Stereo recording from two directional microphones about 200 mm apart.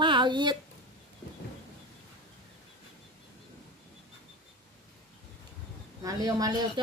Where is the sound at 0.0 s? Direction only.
25° right (ahead or behind).